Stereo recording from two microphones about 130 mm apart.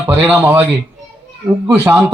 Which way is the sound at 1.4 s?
10° right (ahead or behind).